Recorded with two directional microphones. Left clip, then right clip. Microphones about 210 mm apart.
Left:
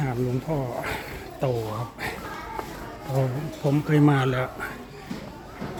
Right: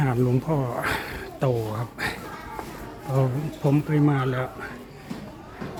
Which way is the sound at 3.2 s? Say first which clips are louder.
Right 1 dB; 15° right (ahead or behind).